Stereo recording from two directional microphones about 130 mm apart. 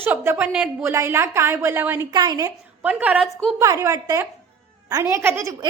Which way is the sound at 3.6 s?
25° right (ahead or behind).